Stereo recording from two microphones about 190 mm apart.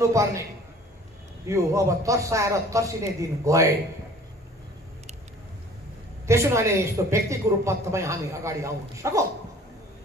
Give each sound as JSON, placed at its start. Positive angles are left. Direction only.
{"t": 0.1, "sound": "a man's voice", "side_deg": -15}
{"t": 1.5, "sound": "a man's voice", "side_deg": -15}
{"t": 6.2, "sound": "a man's voice", "side_deg": -15}